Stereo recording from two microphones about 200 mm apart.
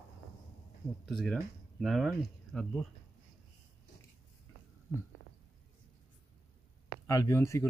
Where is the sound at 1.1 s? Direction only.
Centre (ahead or behind).